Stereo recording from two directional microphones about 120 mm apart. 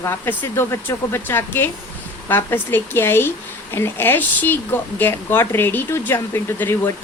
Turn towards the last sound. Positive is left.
turn(degrees=20)  # may be behind; listen again after turning